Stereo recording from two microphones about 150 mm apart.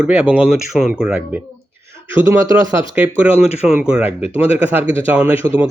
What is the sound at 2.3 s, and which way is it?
Speech, 20° right (ahead or behind).